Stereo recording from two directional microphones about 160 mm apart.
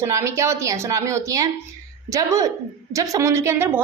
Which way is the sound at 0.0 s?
20° right (ahead or behind).